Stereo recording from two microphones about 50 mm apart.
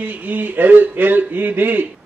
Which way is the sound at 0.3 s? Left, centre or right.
Right.